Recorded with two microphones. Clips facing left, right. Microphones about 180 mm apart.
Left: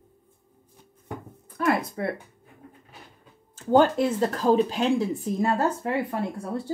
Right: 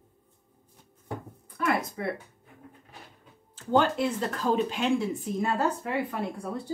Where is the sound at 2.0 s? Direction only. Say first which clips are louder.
Left 3 dB; 40° left (ahead or behind).